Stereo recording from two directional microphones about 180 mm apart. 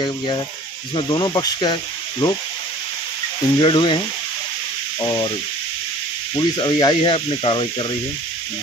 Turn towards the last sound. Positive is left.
turn(degrees=30)  # may be behind; listen again after turning